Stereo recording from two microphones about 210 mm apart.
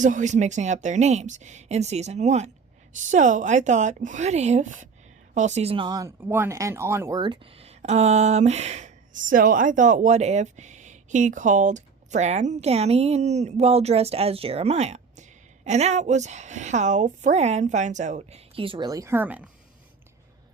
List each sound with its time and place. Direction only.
0.0 s speech: 35° right (ahead or behind); by 19.5 s 10° right (ahead or behind)